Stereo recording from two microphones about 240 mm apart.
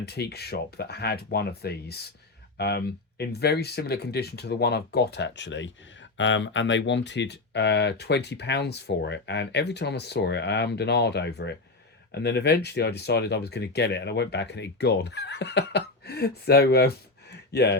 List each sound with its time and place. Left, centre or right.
0.0 s speech: left